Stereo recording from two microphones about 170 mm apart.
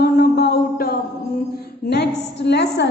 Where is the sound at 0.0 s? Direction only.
70° left (ahead or behind).